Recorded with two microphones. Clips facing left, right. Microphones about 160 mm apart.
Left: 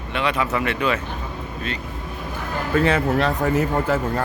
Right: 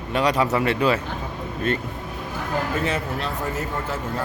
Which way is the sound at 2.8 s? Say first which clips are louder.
Left 7 dB; 65° left (ahead or behind).